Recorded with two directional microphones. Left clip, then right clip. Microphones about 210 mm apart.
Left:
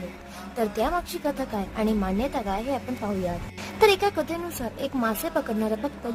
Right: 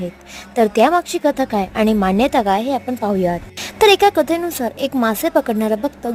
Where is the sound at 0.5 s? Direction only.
40° right (ahead or behind).